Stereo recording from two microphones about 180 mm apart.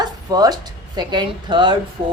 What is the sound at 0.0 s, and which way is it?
Bow-wow, 20° right (ahead or behind).